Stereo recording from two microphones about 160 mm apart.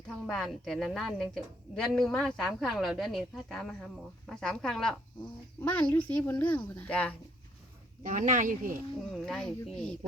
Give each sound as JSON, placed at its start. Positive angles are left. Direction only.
{"t": 0.3, "sound": "a woman's voice", "side_deg": 0}
{"t": 8.0, "sound": "speech", "side_deg": -55}
{"t": 9.1, "sound": "a woman's voice", "side_deg": 5}